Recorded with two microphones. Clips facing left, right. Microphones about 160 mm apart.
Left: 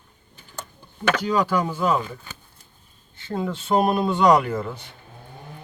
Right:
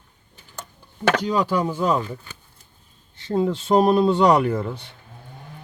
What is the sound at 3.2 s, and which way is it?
Speech, 35° right (ahead or behind).